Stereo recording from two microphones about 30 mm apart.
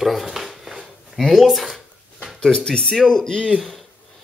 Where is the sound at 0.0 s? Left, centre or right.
Centre.